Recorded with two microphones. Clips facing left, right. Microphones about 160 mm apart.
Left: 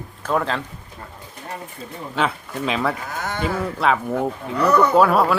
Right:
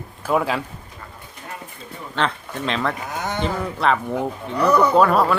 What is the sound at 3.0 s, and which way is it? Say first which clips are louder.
Speech: right 1 dB; 20° right (ahead or behind).